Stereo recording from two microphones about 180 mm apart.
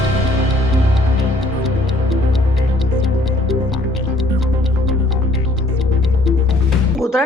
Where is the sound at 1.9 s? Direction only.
Centre (ahead or behind).